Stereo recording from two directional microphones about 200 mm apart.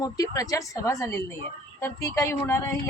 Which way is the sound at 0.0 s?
15° left (ahead or behind).